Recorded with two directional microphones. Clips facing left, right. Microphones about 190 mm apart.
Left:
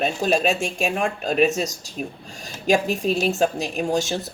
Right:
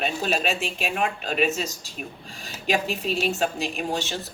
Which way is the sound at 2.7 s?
45° left (ahead or behind).